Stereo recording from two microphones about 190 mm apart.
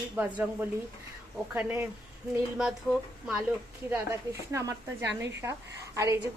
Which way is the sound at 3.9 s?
15° right (ahead or behind).